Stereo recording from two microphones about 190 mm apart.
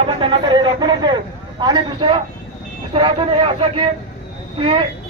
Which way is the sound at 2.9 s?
25° right (ahead or behind).